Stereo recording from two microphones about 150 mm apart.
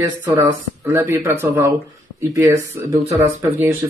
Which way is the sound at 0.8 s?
15° right (ahead or behind).